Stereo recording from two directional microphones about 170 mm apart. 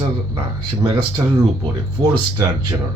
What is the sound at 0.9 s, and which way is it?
A man's voice, 25° right (ahead or behind).